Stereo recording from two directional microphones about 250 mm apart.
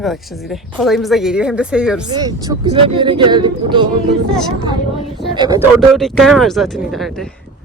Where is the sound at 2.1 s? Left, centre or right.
Centre.